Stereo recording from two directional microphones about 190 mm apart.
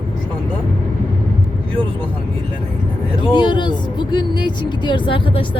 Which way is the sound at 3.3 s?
25° left (ahead or behind).